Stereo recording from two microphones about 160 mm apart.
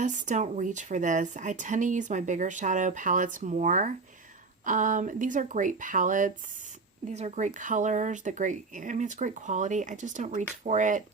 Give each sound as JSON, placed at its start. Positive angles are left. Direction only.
{"t": 0.0, "sound": "speech", "side_deg": -50}
{"t": 7.1, "sound": "speech", "side_deg": -45}